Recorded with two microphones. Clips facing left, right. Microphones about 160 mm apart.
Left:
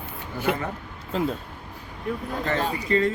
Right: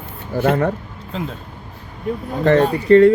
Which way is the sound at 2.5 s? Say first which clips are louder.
Right 12 dB; 40° right (ahead or behind).